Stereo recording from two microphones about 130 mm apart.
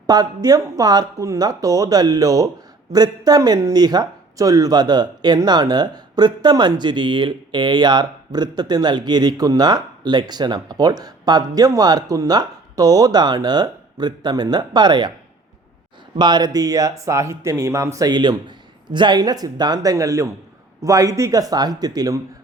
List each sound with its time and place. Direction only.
0.1 s speech: 30° right (ahead or behind)
16.1 s speech: 35° right (ahead or behind)